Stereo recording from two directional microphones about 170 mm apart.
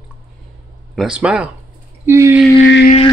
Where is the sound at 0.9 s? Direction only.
5° right (ahead or behind).